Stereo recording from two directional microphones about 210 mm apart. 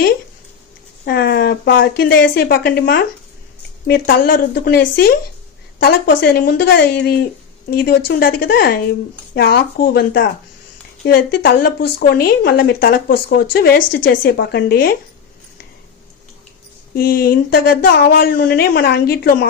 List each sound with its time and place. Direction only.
1.0 s speech: 45° left (ahead or behind)
11.3 s speech: 45° left (ahead or behind)
16.9 s speech: 45° left (ahead or behind)